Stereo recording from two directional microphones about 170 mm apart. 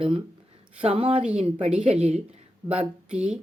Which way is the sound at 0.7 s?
35° right (ahead or behind).